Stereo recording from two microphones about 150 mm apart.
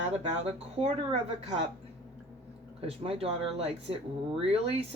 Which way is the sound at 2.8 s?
40° right (ahead or behind).